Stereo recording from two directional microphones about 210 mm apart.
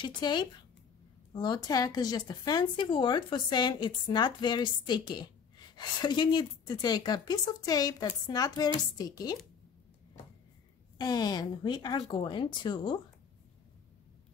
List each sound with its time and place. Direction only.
0.0 s a woman's voice: 20° left (ahead or behind)
11.0 s a woman's voice: 20° left (ahead or behind)